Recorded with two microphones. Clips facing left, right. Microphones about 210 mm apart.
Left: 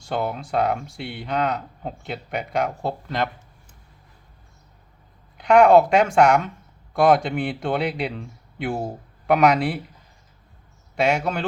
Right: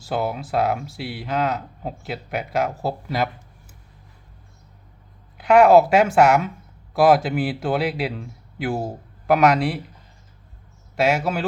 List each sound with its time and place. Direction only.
0.0 s speech: 5° right (ahead or behind)
5.4 s speech: 5° right (ahead or behind)
10.9 s speech: 5° right (ahead or behind)